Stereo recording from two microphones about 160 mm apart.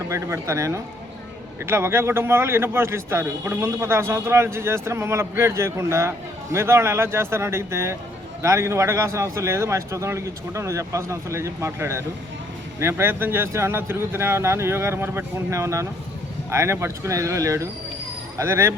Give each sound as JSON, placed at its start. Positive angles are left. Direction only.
{"t": 0.1, "sound": "a man's voice", "side_deg": -20}